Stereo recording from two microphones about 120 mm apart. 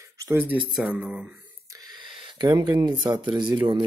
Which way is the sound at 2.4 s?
35° right (ahead or behind).